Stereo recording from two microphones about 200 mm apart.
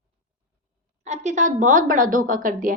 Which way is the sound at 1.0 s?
35° right (ahead or behind).